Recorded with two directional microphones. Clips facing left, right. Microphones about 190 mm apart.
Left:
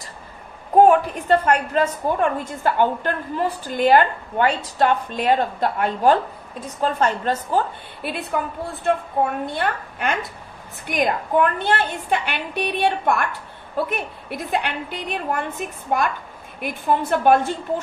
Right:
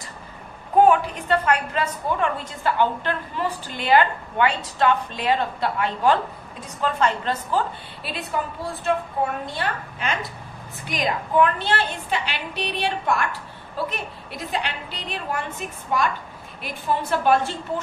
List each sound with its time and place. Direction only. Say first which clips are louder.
0.7 s a woman's voice: left 3 dB; 45° left (ahead or behind)